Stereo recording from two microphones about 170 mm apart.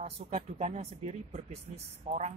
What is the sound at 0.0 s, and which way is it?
Speech, 40° right (ahead or behind).